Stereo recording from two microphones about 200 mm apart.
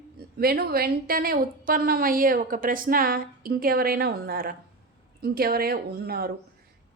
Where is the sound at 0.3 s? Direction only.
50° right (ahead or behind).